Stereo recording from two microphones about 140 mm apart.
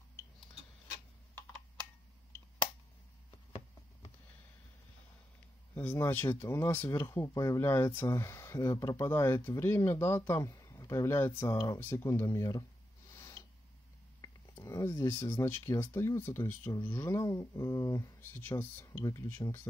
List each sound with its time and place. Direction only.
5.8 s speech: 15° left (ahead or behind)
13.1 s a sound: 25° left (ahead or behind)
15.8 s speech: 20° left (ahead or behind)